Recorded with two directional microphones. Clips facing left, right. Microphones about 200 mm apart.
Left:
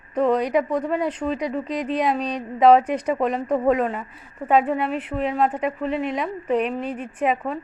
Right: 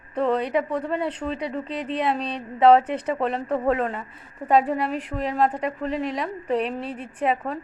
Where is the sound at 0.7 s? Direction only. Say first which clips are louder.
Left 3 dB; 10° left (ahead or behind).